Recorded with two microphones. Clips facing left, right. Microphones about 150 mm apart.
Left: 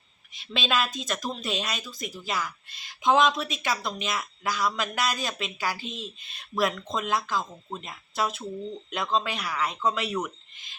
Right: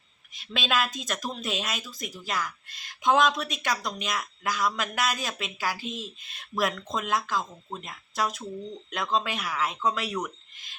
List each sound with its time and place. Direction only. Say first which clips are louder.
0.3 s speech: even; centre (ahead or behind)
5.8 s speech: right 1 dB; 50° right (ahead or behind)
6.2 s speech: left 2 dB; centre (ahead or behind)